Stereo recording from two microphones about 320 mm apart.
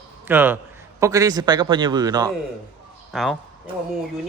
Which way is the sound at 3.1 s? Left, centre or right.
Centre.